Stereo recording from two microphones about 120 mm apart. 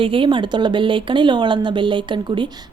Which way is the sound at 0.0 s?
45° right (ahead or behind).